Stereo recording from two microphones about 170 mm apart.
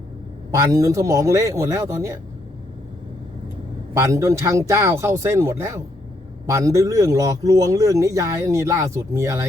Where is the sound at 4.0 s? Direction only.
20° right (ahead or behind).